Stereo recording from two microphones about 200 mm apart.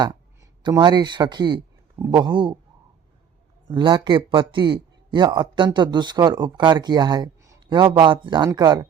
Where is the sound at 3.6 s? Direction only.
25° right (ahead or behind).